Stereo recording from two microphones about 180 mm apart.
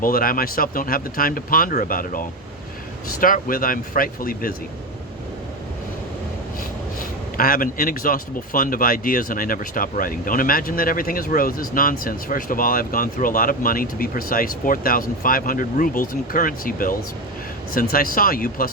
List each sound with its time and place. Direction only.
0.0 s speech: 50° left (ahead or behind)
7.0 s speech: 55° left (ahead or behind)